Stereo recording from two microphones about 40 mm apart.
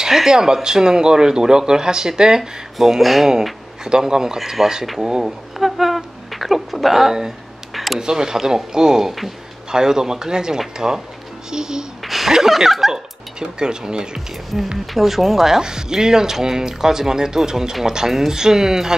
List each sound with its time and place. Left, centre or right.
0.0 s speech: centre
3.8 s speech: centre
4.4 s speech: centre
5.0 s speech: centre
5.6 s a sound: centre
7.7 s a sound: centre
8.0 s speech: centre
12.0 s a sound: centre
12.3 s speech: centre
13.4 s speech: centre
14.5 s speech: centre
15.6 s speech: centre